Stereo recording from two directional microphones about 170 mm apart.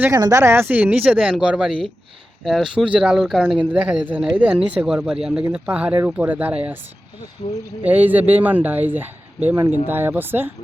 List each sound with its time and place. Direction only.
0.0 s speech: 20° right (ahead or behind)
7.4 s speech: 40° left (ahead or behind)
7.9 s speech: 10° right (ahead or behind)